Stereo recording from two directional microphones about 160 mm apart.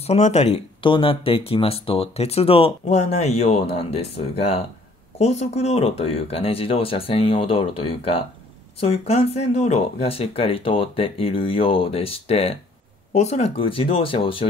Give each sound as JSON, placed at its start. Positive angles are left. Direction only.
{"t": 0.0, "sound": "speech", "side_deg": 45}
{"t": 0.8, "sound": "speech", "side_deg": 30}